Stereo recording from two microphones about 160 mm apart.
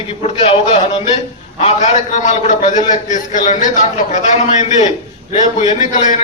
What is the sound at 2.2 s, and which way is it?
A man's voice, 50° left (ahead or behind).